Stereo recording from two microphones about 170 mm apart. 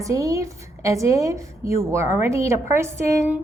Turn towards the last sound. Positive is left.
turn(degrees=-15)  # may be behind; listen again after turning